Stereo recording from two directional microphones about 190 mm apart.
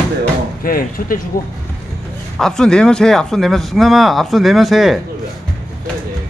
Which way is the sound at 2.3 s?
5° left (ahead or behind).